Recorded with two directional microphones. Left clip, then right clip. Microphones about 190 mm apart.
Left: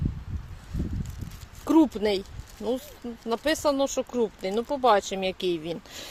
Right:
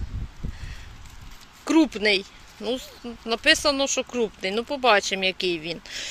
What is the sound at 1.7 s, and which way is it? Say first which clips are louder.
Speech: right 2 dB; 15° left (ahead or behind).